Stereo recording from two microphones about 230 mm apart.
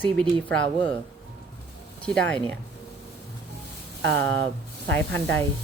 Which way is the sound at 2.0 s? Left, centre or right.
Centre.